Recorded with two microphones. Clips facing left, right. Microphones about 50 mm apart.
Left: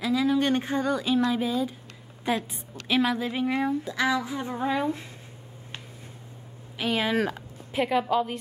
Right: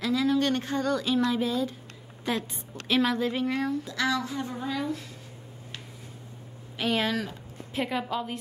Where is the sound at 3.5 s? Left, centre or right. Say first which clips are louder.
Left 2 dB; centre.